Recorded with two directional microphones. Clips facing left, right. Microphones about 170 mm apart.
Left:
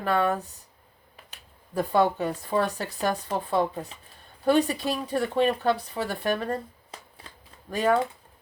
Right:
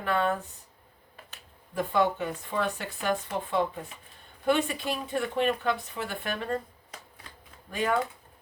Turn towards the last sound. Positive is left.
turn(degrees=35)  # may be behind; listen again after turning